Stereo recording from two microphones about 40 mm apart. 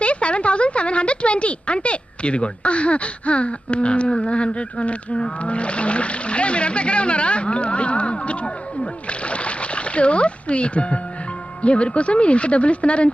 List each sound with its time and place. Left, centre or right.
0.0 s speech: left